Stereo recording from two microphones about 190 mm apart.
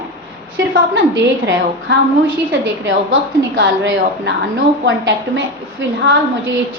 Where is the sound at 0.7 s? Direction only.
75° right (ahead or behind).